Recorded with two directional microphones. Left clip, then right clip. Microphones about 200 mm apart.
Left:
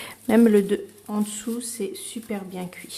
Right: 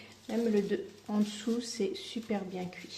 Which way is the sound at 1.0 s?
5° left (ahead or behind).